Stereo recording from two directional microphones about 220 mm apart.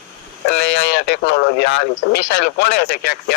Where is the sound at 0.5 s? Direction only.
50° left (ahead or behind).